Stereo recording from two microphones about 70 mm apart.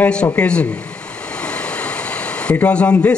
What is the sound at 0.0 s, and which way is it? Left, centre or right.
Speech, centre.